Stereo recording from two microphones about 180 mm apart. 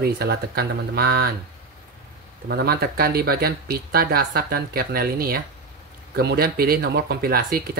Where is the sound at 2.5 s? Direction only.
60° right (ahead or behind).